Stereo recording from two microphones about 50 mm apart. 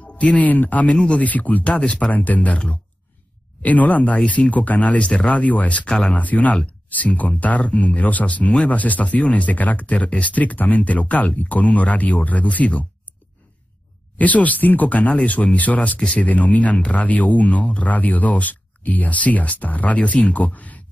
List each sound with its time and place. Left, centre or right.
0.0 s speech: left
2.0 s speech: left
3.6 s speech: left
5.9 s speech: centre
6.1 s speech: left
14.1 s speech: left